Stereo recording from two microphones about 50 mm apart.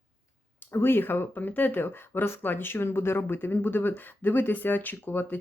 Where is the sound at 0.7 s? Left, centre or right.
Left.